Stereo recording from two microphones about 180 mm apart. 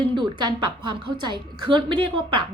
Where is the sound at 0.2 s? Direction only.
25° right (ahead or behind).